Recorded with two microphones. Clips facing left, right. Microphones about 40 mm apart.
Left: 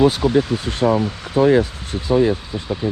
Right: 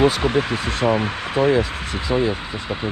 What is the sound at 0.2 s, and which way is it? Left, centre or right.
Speech, right.